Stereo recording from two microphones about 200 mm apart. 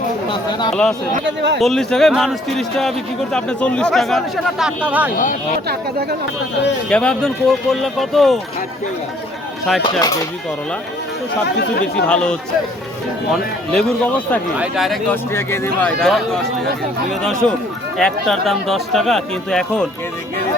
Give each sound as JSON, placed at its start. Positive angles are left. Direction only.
{"t": 0.7, "sound": "speech", "side_deg": 5}
{"t": 1.2, "sound": "speech", "side_deg": -60}
{"t": 1.5, "sound": "speech", "side_deg": 0}
{"t": 5.1, "sound": "speech", "side_deg": 40}
{"t": 5.6, "sound": "speech", "side_deg": -50}
{"t": 6.9, "sound": "speech", "side_deg": 5}
{"t": 11.9, "sound": "speech", "side_deg": 5}
{"t": 15.1, "sound": "speech", "side_deg": 10}
{"t": 17.9, "sound": "speech", "side_deg": 0}